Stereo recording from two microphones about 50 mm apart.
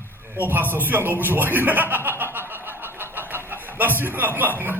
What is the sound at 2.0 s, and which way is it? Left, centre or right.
Snicker, right.